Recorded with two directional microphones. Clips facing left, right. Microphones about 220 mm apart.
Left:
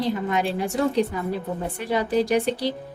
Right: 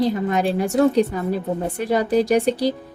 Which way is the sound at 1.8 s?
40° right (ahead or behind).